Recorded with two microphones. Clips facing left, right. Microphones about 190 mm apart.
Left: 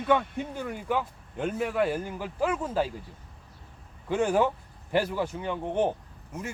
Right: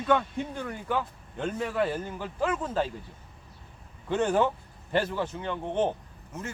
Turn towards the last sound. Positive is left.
turn(degrees=10)  # may be behind; listen again after turning